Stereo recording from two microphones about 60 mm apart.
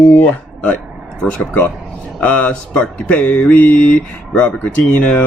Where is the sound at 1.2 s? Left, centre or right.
Left.